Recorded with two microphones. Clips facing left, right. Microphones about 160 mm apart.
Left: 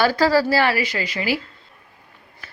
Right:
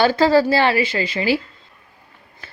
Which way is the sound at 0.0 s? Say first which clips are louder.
Right 3 dB; 25° right (ahead or behind).